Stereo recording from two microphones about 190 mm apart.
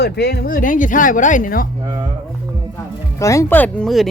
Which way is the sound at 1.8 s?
20° right (ahead or behind).